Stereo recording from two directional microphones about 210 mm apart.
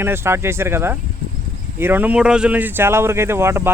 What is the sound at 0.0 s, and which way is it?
Speech, 10° right (ahead or behind).